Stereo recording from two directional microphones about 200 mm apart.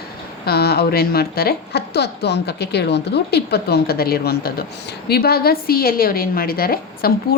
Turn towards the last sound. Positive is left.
turn(degrees=50)  # may be behind; listen again after turning